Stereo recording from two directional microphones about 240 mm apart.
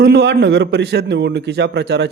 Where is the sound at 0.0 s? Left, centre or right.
Right.